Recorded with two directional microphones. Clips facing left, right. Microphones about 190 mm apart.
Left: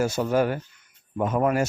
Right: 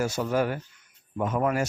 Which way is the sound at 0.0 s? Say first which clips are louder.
Left 3 dB; 30° left (ahead or behind).